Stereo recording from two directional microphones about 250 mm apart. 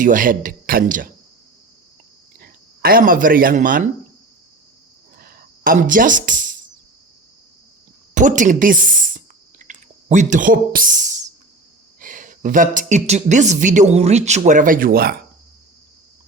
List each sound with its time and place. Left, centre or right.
0.0 s speech: right
2.4 s speech: right
5.2 s a sound: right
8.1 s speech: right